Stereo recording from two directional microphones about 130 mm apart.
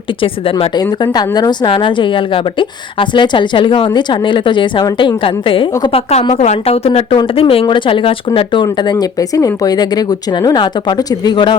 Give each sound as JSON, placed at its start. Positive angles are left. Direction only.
{"t": 1.1, "sound": "a woman's voice", "side_deg": 30}
{"t": 6.3, "sound": "a woman's voice", "side_deg": 55}